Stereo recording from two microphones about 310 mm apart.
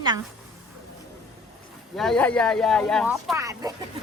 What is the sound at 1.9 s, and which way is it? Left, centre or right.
Speech, centre.